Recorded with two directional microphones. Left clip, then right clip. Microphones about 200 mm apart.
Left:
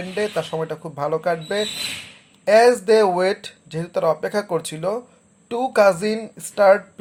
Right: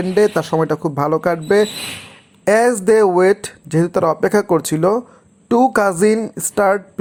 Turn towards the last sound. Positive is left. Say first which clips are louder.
# left 1 dB
turn(degrees=-35)  # may be behind; listen again after turning